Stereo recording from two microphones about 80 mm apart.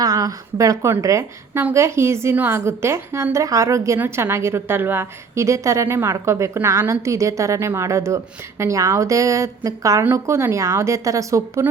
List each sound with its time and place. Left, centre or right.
0.0 s a woman's voice: right
2.3 s a woman's voice: right
2.6 s a woman's voice: right
10.0 s a woman's voice: right